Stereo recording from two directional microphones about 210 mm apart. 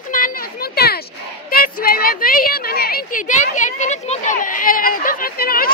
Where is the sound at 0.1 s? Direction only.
40° left (ahead or behind).